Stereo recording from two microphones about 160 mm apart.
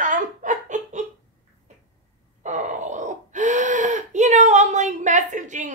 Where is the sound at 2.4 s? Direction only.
50° right (ahead or behind).